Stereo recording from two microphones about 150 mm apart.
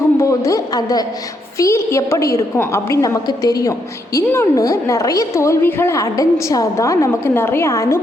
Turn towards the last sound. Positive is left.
turn(degrees=20)  # may be behind; listen again after turning